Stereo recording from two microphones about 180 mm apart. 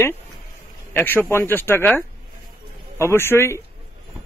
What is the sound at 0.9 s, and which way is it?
A man's voice, 10° left (ahead or behind).